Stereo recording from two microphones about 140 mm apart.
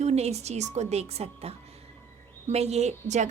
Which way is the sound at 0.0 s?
50° right (ahead or behind).